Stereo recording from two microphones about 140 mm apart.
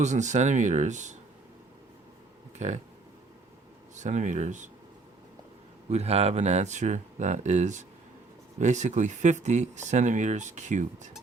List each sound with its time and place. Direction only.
0.0 s speech: 55° right (ahead or behind)
3.9 s speech: 55° right (ahead or behind)
5.9 s speech: 50° right (ahead or behind)